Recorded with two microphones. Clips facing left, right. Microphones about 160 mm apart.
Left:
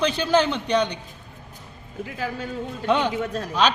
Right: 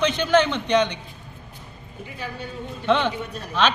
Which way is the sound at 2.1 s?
90° left.